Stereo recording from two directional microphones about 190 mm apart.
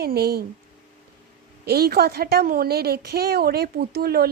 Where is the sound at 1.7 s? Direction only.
55° right (ahead or behind).